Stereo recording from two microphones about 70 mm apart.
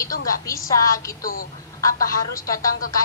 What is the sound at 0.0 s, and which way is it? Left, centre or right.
A woman's voice, left.